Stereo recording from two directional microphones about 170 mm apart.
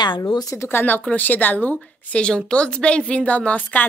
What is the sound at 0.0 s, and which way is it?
Speech, 25° left (ahead or behind).